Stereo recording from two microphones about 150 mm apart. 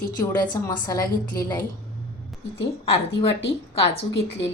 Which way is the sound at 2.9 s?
40° left (ahead or behind).